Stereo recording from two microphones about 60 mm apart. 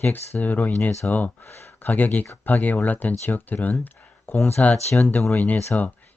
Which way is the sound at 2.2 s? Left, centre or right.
Left.